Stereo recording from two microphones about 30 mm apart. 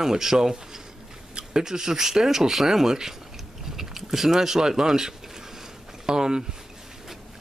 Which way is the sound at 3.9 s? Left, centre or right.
Centre.